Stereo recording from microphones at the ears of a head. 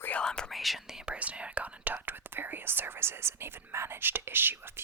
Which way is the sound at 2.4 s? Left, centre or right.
Right.